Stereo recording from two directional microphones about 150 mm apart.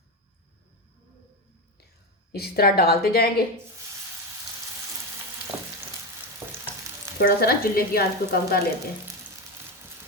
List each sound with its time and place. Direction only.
2.3 s frying: 90° left
5.5 s frying: 15° left (ahead or behind)
6.4 s frying: 15° right (ahead or behind)
7.2 s frying: 90° left